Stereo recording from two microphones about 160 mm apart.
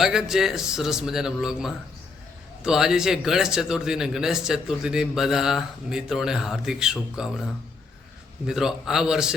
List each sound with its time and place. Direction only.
0.0 s a man's voice: 5° right (ahead or behind)
8.4 s a man's voice: 5° right (ahead or behind)